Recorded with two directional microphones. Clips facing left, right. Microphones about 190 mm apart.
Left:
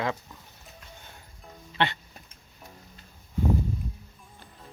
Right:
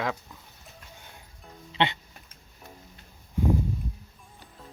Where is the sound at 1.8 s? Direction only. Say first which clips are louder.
Right 1 dB; 20° right (ahead or behind).